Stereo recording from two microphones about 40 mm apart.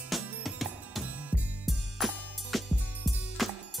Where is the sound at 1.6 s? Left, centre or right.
Centre.